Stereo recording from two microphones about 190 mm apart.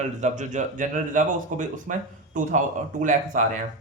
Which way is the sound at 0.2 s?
40° right (ahead or behind).